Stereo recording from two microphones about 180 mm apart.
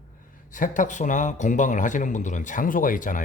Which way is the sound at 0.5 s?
45° left (ahead or behind).